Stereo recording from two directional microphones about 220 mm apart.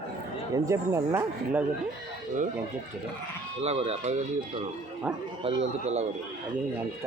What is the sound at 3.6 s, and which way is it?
Speech, 30° right (ahead or behind).